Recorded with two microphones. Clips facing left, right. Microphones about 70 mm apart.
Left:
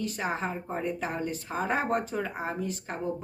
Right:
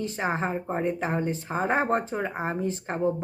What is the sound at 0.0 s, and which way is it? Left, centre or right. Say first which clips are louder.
Speech: right 3 dB; right.